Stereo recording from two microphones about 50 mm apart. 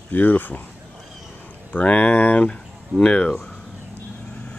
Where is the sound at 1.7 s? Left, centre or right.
Left.